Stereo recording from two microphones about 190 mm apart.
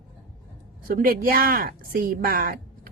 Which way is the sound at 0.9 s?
50° right (ahead or behind).